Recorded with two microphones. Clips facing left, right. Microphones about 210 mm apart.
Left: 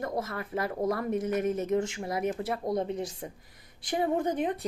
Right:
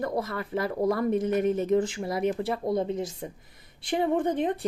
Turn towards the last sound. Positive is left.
turn(degrees=-25)  # may be behind; listen again after turning